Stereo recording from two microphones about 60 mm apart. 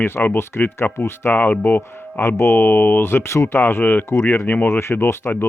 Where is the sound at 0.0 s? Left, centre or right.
Left.